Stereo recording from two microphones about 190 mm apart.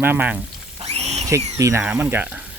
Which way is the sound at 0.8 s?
35° right (ahead or behind).